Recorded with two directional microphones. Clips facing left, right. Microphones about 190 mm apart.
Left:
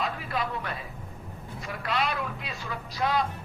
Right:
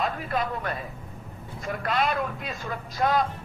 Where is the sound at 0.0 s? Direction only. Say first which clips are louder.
Right 3 dB; 45° right (ahead or behind).